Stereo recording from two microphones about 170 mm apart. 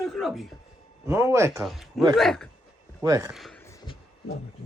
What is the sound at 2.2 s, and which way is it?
Speech, centre (ahead or behind).